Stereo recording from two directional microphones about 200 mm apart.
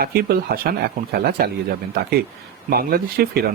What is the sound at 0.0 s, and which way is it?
Speech, 50° right (ahead or behind).